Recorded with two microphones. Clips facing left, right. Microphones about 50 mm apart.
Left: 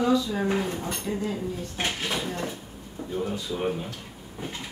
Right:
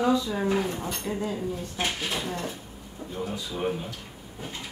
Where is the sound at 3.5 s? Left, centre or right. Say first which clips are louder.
Left 1 dB; centre.